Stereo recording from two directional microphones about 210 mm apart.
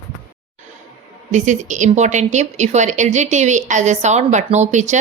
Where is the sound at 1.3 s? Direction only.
35° right (ahead or behind).